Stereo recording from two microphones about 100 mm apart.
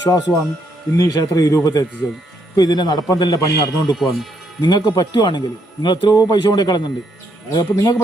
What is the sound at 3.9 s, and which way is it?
Speech, centre (ahead or behind).